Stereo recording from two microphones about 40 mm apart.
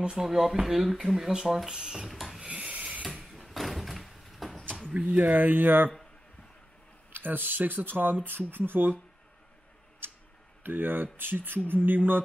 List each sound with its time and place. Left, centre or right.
0.1 s speech: centre
2.0 s filing: centre
2.4 s filing: right
3.1 s a sound: centre
3.4 s door: centre
5.1 s speech: right
7.1 s speech: right
10.0 s tick-tock: right
10.6 s speech: right